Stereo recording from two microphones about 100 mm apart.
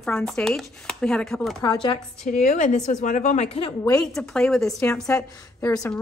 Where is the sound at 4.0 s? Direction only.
5° left (ahead or behind).